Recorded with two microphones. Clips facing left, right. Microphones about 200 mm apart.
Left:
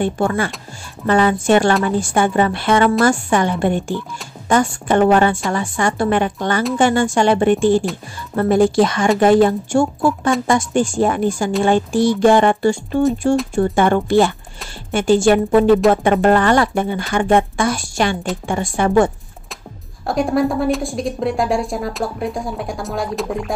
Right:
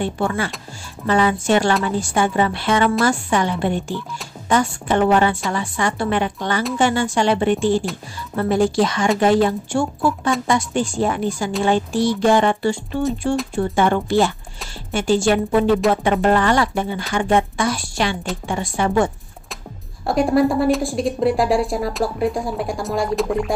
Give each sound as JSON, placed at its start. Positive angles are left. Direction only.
{"t": 0.0, "sound": "speech", "side_deg": 50}
{"t": 20.1, "sound": "a woman's voice", "side_deg": 0}